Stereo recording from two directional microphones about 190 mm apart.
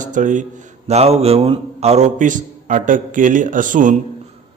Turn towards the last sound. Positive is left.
turn(degrees=-45)  # may be behind; listen again after turning